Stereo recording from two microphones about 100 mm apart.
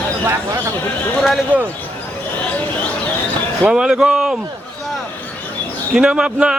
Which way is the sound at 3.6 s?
10° right (ahead or behind).